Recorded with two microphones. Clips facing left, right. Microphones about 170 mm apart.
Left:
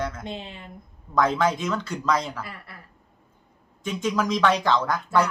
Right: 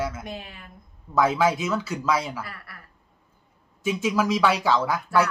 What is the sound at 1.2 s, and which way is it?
A man's voice, 5° right (ahead or behind).